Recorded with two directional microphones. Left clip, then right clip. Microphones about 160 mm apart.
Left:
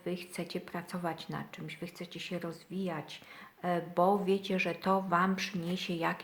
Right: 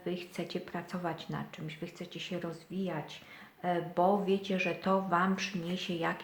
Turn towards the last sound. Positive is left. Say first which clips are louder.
# even
turn(degrees=40)  # may be behind; listen again after turning